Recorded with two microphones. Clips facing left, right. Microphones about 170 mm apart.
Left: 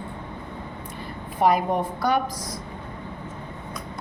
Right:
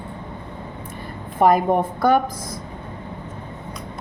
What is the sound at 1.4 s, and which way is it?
Speech, 50° right (ahead or behind).